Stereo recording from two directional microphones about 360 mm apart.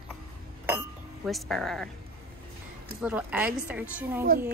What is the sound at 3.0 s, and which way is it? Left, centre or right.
Speech, centre.